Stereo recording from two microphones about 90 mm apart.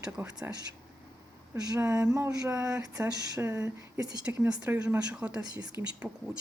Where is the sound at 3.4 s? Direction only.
30° right (ahead or behind); by 6.2 s 10° right (ahead or behind).